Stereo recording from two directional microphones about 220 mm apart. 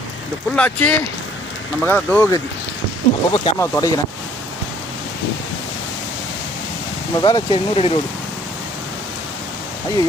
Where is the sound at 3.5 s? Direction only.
15° left (ahead or behind).